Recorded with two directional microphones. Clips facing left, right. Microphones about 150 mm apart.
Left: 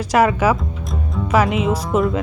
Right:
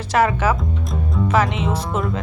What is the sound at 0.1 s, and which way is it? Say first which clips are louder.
Speech: left 2 dB; 10° left (ahead or behind).